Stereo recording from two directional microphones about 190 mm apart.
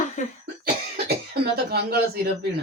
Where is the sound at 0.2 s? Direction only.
40° left (ahead or behind).